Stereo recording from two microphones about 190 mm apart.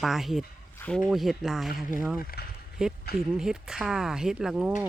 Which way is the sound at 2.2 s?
50° left (ahead or behind).